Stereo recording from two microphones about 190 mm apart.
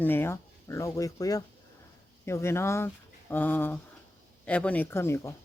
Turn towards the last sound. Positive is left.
turn(degrees=15)  # may be behind; listen again after turning